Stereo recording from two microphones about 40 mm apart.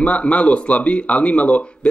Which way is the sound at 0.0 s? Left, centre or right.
Left.